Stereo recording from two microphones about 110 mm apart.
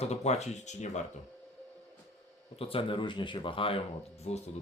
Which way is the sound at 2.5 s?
55° left (ahead or behind).